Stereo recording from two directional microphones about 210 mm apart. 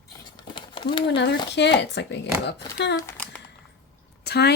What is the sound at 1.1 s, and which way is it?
Speech, 55° left (ahead or behind).